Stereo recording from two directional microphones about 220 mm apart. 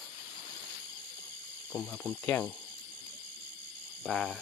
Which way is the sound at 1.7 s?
5° left (ahead or behind).